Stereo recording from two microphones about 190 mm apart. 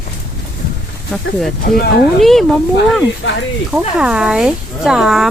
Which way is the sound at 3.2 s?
70° left (ahead or behind).